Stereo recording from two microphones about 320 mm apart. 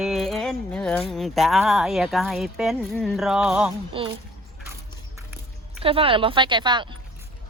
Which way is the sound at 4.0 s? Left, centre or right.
Centre.